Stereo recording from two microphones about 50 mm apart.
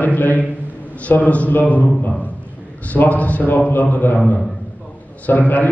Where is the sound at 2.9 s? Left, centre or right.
Left.